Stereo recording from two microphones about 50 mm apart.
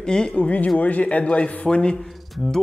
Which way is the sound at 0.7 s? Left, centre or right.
Left.